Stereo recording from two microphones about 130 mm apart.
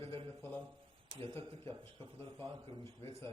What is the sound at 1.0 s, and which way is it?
A man's voice, 40° right (ahead or behind).